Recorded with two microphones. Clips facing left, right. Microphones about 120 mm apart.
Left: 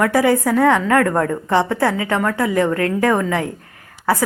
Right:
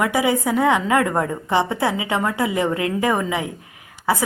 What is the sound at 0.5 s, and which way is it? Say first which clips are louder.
A woman's voice: left 1 dB; 5° right (ahead or behind).